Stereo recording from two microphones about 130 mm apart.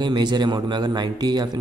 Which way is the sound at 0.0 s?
35° right (ahead or behind).